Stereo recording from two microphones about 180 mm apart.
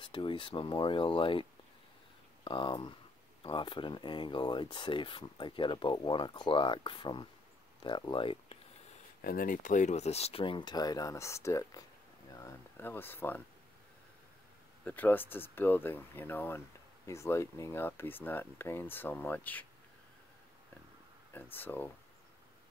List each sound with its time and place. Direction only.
0.0 s speech: 25° left (ahead or behind)
9.2 s speech: 50° left (ahead or behind); by 13.4 s 10° left (ahead or behind)
14.9 s speech: 10° left (ahead or behind)
21.3 s speech: 10° left (ahead or behind)